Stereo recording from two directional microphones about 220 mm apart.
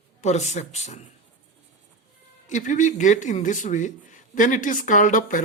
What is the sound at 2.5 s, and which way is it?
Speech, 35° left (ahead or behind).